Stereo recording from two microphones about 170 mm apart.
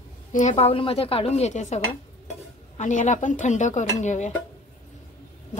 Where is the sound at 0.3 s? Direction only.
45° left (ahead or behind).